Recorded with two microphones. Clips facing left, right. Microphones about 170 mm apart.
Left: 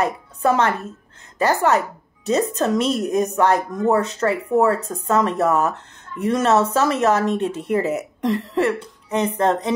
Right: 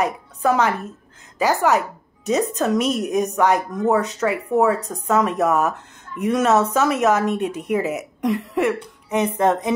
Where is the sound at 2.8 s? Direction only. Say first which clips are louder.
Left 1 dB; 15° right (ahead or behind).